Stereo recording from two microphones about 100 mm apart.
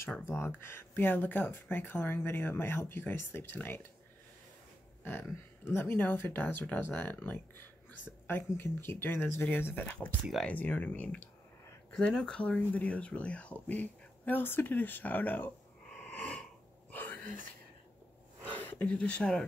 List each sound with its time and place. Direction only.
0.3 s speech: 25° left (ahead or behind)
5.7 s speech: 20° left (ahead or behind)
11.9 s speech: 5° left (ahead or behind)
16.1 s a sound: 15° left (ahead or behind)
18.4 s speech: 15° left (ahead or behind)